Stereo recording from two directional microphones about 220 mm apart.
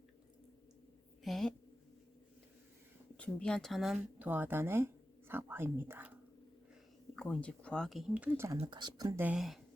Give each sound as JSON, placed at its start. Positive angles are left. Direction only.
{"t": 1.2, "sound": "a woman's voice", "side_deg": 0}
{"t": 3.2, "sound": "speech", "side_deg": 5}
{"t": 7.2, "sound": "speech", "side_deg": 5}
{"t": 8.5, "sound": "speech", "side_deg": -20}